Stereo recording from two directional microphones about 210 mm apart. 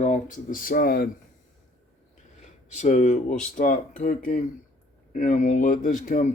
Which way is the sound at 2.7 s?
35° left (ahead or behind).